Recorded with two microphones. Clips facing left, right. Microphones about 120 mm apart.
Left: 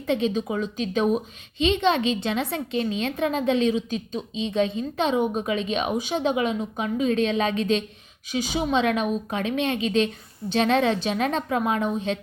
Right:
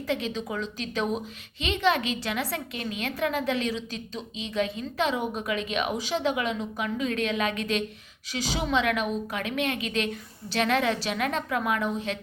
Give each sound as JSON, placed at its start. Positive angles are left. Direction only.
{"t": 0.0, "sound": "a woman's voice", "side_deg": 20}